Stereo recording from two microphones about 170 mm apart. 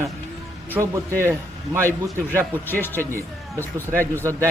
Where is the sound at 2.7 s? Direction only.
10° left (ahead or behind).